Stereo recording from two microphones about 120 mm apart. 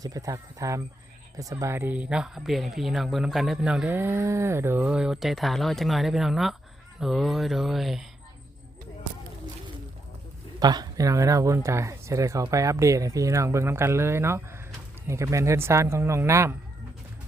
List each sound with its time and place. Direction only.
0.0 s speech: 30° right (ahead or behind); by 8.0 s centre (ahead or behind)
10.6 s speech: 35° right (ahead or behind)